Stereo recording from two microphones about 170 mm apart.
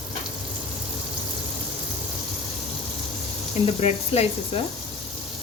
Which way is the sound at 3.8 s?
40° left (ahead or behind).